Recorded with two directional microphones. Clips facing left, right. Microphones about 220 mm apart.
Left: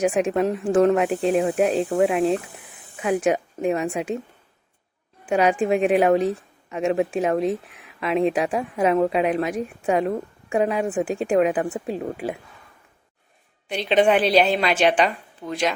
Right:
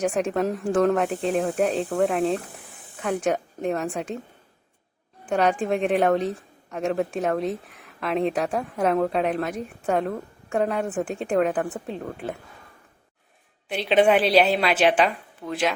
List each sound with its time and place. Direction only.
0.0 s a woman's voice: 5° left (ahead or behind)
1.1 s speech: 35° left (ahead or behind)
1.4 s a woman's voice: 10° left (ahead or behind)
5.2 s a woman's voice: 10° left (ahead or behind)
13.7 s a woman's voice: 5° right (ahead or behind)